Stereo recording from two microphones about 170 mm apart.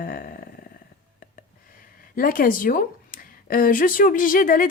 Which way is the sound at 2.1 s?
55° left (ahead or behind).